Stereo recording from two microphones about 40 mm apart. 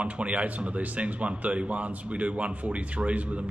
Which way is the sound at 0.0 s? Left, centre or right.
Right.